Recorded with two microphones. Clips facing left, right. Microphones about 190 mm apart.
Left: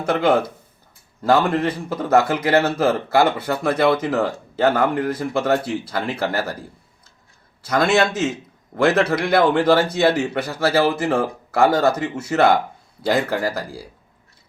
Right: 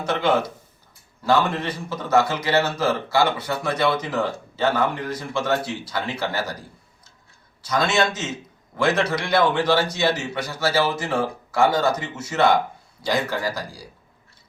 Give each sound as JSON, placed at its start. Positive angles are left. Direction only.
{"t": 0.0, "sound": "speech", "side_deg": 55}
{"t": 7.6, "sound": "speech", "side_deg": 55}